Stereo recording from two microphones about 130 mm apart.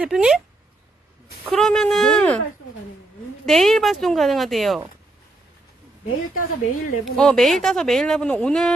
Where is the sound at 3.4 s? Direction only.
Centre (ahead or behind).